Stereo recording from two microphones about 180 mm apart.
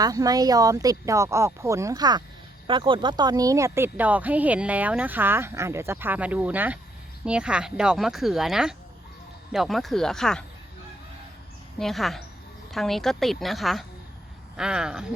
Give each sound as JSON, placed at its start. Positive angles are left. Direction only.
{"t": 0.0, "sound": "a woman's voice", "side_deg": -20}
{"t": 11.8, "sound": "a woman's voice", "side_deg": 0}